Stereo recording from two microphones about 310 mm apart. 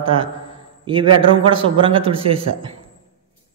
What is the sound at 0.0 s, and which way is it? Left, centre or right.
A man's voice, centre.